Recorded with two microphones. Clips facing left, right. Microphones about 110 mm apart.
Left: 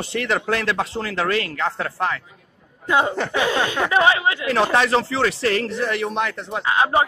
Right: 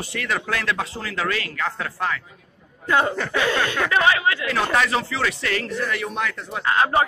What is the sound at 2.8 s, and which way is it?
Speech, 20° left (ahead or behind).